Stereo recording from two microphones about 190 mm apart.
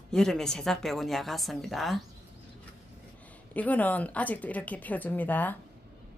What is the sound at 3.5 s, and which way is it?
A woman's voice, 10° left (ahead or behind).